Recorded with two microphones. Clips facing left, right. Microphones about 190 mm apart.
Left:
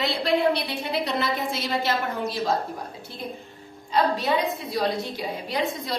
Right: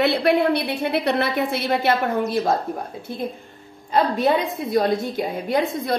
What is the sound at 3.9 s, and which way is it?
A woman's voice, 55° right (ahead or behind).